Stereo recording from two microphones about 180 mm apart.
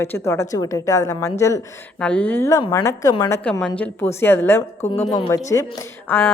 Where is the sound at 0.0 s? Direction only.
15° left (ahead or behind).